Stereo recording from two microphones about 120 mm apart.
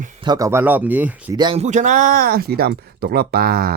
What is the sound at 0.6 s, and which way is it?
Speech, 15° right (ahead or behind).